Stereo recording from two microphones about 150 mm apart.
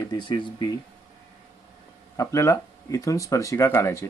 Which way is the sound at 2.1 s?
20° left (ahead or behind).